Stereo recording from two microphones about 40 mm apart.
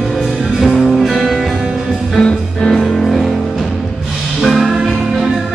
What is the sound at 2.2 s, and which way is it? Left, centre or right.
Music, centre.